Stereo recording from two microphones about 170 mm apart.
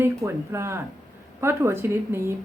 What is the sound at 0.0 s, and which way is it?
A woman's voice, 15° right (ahead or behind).